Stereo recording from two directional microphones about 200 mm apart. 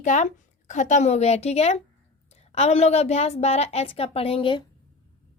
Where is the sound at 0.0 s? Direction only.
35° left (ahead or behind).